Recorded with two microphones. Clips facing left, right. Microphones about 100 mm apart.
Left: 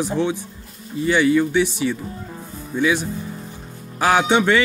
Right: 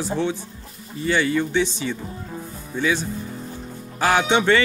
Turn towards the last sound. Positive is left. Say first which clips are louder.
# left 2 dB
turn(degrees=10)  # may be behind; listen again after turning